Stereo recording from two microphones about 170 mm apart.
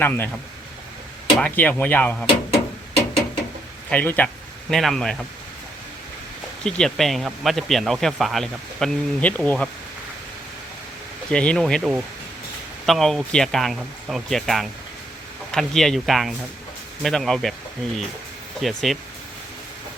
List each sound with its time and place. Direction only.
0.0 s speech: 10° left (ahead or behind)
1.4 s speech: 10° left (ahead or behind)
3.8 s speech: 10° left (ahead or behind)
6.6 s speech: 5° left (ahead or behind)
11.3 s speech: 5° left (ahead or behind)
18.6 s speech: centre (ahead or behind)